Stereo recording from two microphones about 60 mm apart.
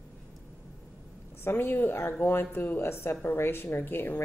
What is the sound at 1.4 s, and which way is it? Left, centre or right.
Speech, left.